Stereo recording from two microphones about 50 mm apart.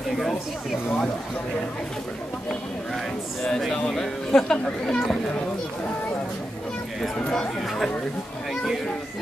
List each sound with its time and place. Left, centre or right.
3.9 s speech: centre
7.2 s speech: centre